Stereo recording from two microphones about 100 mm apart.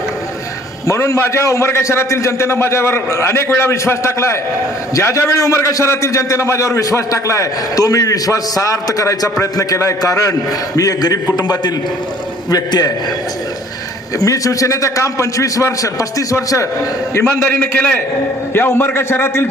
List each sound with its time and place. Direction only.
0.9 s a man's voice: 30° left (ahead or behind)
14.2 s a man's voice: 35° left (ahead or behind)
17.4 s a man's voice: 15° left (ahead or behind)